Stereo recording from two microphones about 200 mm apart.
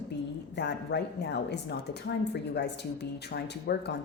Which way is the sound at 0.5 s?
60° left (ahead or behind).